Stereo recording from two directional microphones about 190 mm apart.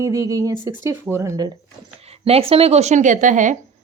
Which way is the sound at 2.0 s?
30° right (ahead or behind).